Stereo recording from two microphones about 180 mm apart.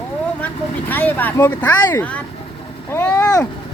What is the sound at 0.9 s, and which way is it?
Speech, 10° left (ahead or behind).